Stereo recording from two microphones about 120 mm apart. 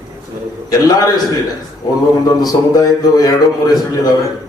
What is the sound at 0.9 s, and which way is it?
Speech, 30° left (ahead or behind).